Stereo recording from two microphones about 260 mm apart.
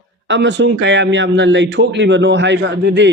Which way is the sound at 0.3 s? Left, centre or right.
Right.